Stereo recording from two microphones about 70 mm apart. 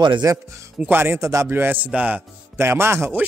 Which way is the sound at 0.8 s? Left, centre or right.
Right.